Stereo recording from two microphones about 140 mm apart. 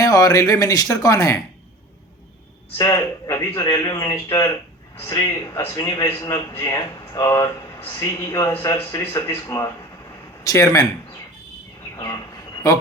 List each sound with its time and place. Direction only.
0.0 s a man's voice: 25° left (ahead or behind)
2.7 s a man's voice: 25° left (ahead or behind)
11.9 s train: 25° left (ahead or behind)